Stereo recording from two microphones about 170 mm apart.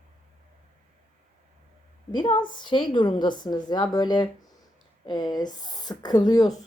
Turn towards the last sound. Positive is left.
turn(degrees=25)  # may be behind; listen again after turning